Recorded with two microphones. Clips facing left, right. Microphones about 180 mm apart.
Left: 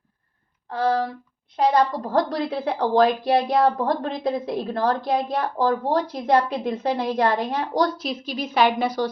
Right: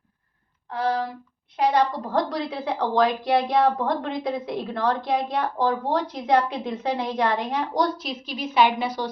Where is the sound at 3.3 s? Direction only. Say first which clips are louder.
Left 1 dB; 35° left (ahead or behind).